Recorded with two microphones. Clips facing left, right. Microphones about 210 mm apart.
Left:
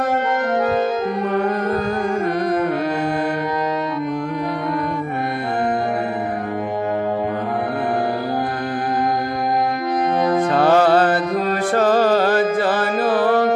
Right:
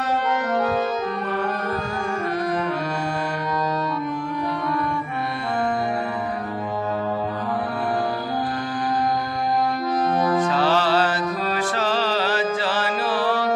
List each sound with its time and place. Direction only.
10.4 s music: 50° left (ahead or behind)